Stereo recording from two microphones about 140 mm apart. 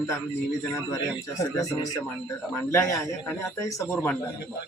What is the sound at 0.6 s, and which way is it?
Speech, 25° left (ahead or behind).